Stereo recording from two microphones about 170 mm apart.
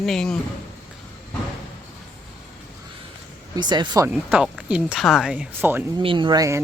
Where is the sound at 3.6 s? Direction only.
25° right (ahead or behind).